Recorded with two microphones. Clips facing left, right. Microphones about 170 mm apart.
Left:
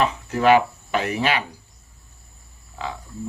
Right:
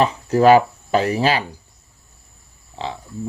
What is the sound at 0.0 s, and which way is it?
Speech, 35° right (ahead or behind).